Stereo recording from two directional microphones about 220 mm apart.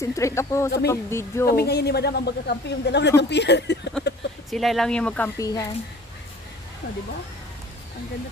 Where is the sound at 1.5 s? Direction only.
45° left (ahead or behind).